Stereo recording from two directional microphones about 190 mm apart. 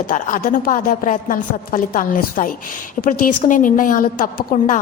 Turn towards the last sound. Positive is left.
turn(degrees=45)  # may be behind; listen again after turning